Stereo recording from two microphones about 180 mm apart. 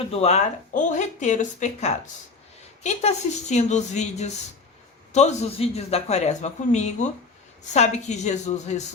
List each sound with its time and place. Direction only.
0.1 s speech: 35° left (ahead or behind)